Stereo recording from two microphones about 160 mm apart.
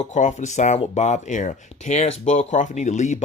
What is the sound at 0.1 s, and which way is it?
Speech, 50° left (ahead or behind).